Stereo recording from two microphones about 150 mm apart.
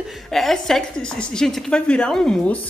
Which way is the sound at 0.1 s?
Centre (ahead or behind).